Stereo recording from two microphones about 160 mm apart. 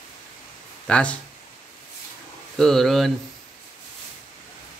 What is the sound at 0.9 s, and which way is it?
Speech, 5° left (ahead or behind).